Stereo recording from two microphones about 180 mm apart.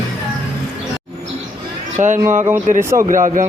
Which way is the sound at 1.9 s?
45° right (ahead or behind).